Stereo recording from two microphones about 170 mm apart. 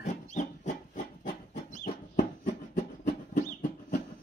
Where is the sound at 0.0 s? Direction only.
45° left (ahead or behind).